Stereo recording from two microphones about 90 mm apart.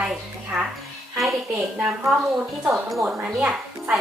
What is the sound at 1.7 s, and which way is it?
A woman's voice, 5° right (ahead or behind).